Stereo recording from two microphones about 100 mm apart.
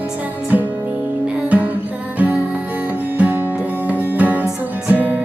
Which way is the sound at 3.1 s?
20° right (ahead or behind).